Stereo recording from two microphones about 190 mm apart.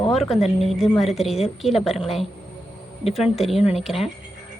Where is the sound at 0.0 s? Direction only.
Centre (ahead or behind).